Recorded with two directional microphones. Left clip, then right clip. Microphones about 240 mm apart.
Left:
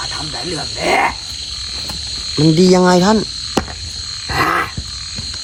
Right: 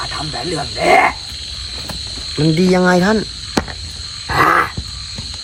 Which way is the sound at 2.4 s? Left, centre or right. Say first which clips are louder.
Left 3 dB; centre.